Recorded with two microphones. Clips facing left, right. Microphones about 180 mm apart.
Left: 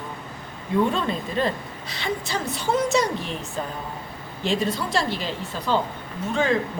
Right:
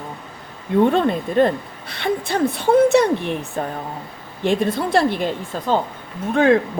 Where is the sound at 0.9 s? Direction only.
55° right (ahead or behind).